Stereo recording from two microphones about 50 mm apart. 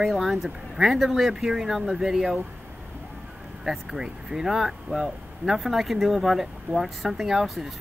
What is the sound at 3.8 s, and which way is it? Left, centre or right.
Speech, centre.